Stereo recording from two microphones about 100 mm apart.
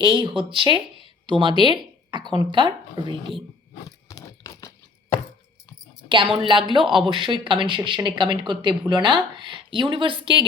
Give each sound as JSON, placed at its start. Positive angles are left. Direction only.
{"t": 0.0, "sound": "speech", "side_deg": -55}
{"t": 3.8, "sound": "a sound", "side_deg": 35}
{"t": 6.1, "sound": "speech", "side_deg": -55}